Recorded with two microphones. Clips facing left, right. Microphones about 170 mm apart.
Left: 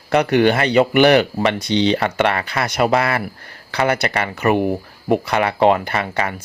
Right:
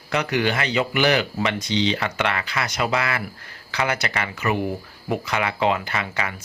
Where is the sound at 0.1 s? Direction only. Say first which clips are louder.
Left 8 dB; 55° left (ahead or behind).